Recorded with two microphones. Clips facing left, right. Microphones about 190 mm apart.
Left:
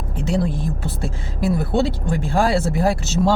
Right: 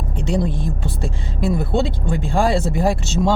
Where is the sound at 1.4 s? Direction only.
5° left (ahead or behind).